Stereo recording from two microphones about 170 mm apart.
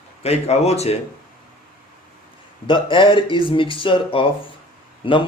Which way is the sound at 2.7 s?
30° left (ahead or behind).